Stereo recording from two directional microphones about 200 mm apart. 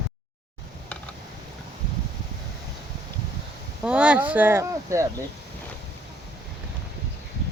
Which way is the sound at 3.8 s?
5° right (ahead or behind).